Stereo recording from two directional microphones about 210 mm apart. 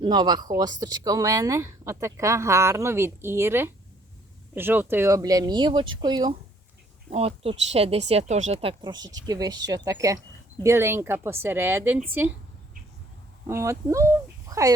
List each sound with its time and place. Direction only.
0.0 s speech: 20° right (ahead or behind)
8.6 s speech: 20° right (ahead or behind)
13.5 s speech: 15° right (ahead or behind)